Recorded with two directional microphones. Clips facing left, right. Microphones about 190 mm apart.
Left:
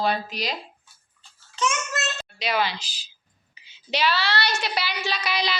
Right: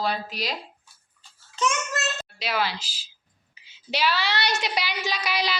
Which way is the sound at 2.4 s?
5° right (ahead or behind).